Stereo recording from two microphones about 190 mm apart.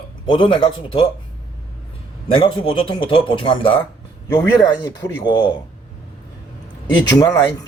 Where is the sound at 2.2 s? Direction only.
25° left (ahead or behind).